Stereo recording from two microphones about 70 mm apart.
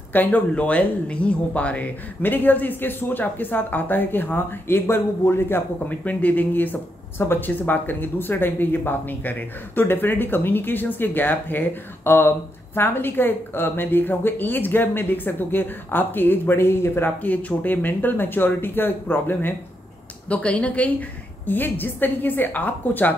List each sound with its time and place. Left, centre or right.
0.1 s speech: left
20.2 s speech: centre